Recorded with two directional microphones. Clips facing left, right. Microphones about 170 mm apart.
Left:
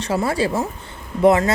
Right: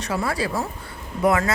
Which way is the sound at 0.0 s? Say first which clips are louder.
Left 5 dB; 25° left (ahead or behind).